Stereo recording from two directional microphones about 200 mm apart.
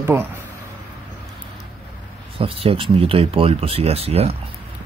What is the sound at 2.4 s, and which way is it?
Speech, 25° right (ahead or behind).